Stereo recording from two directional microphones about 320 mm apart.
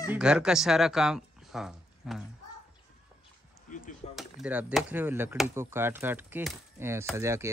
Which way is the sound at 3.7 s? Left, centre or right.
Left.